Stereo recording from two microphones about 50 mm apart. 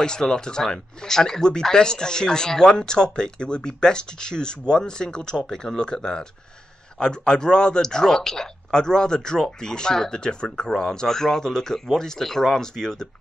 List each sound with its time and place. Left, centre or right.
0.0 s speech: centre